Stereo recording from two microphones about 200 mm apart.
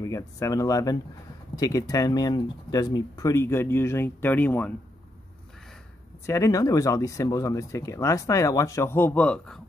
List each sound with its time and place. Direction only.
0.0 s speech: 15° left (ahead or behind)
6.2 s speech: 15° left (ahead or behind)